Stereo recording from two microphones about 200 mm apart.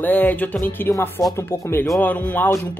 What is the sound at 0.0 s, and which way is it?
Speech, 10° left (ahead or behind).